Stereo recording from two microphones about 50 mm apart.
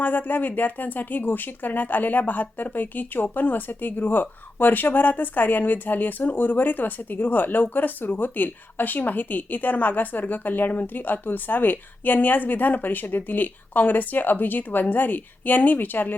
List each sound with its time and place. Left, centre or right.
0.0 s a woman's voice: left